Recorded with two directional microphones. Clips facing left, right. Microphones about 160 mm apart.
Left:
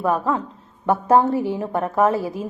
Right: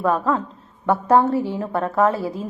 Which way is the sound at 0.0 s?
15° left (ahead or behind).